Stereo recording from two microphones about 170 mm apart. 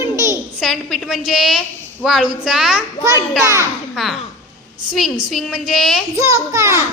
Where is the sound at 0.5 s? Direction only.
Centre (ahead or behind).